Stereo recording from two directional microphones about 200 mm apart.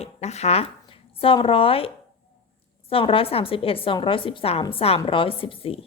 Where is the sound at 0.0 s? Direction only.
35° left (ahead or behind).